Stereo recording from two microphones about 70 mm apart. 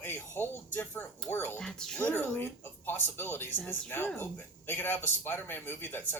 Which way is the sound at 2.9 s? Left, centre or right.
Left.